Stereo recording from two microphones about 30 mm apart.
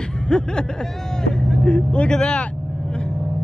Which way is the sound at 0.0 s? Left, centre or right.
Left.